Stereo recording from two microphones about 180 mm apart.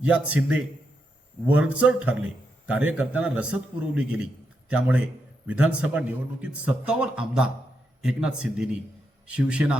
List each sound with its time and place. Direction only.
0.0 s a man's voice: 5° right (ahead or behind)